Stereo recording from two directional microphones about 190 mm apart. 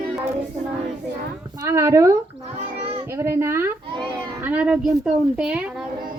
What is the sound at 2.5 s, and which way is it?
Children playing, 30° right (ahead or behind).